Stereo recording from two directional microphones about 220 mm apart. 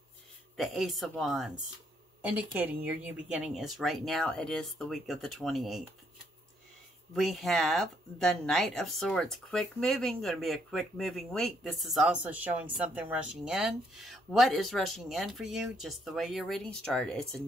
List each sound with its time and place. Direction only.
0.6 s speech: centre (ahead or behind)
7.2 s speech: centre (ahead or behind)